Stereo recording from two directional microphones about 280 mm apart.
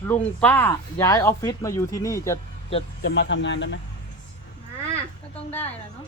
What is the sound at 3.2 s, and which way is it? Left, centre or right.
Speech, left.